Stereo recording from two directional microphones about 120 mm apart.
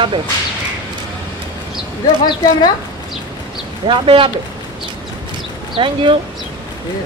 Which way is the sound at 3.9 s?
45° right (ahead or behind).